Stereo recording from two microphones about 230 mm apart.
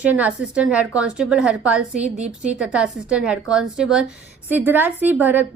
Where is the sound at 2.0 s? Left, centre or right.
Right.